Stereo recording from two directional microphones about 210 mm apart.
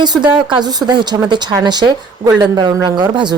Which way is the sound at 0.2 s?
20° right (ahead or behind).